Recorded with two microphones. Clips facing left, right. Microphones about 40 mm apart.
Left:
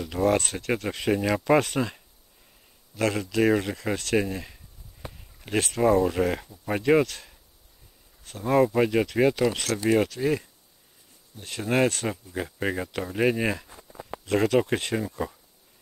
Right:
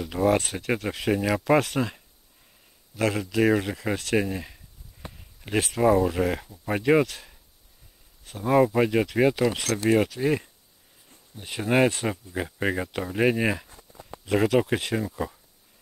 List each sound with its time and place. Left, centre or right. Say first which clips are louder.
0.0 s speech: right 1 dB; centre
3.0 s speech: even; centre
13.7 s a sound: left 5 dB; left
14.2 s speech: even; centre